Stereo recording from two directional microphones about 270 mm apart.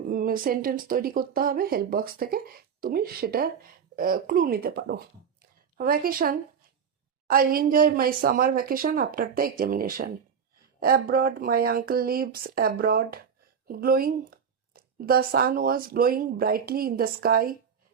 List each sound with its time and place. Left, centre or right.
0.1 s speech: right